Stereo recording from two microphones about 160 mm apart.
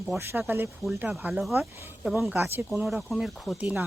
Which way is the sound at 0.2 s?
15° right (ahead or behind).